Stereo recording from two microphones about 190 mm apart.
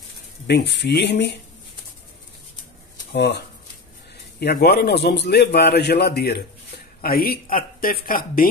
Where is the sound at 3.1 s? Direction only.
60° left (ahead or behind).